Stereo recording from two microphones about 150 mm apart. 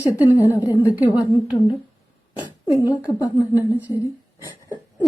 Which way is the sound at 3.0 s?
20° left (ahead or behind).